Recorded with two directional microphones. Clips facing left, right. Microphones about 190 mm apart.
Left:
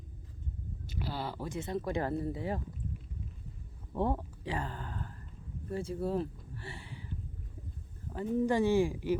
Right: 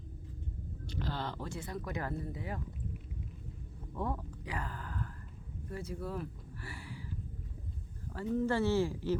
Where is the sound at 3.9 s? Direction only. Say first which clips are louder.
Left 6 dB; 30° left (ahead or behind).